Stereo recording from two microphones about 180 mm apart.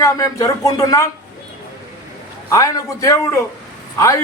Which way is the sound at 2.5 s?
20° left (ahead or behind).